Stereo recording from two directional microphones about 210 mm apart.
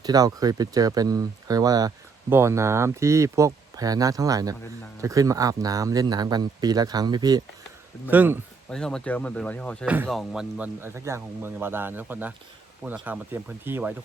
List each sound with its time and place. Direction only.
0.0 s speech: 15° right (ahead or behind)
8.1 s speech: 10° right (ahead or behind)
8.7 s speech: 5° left (ahead or behind)
9.8 s speech: 5° right (ahead or behind)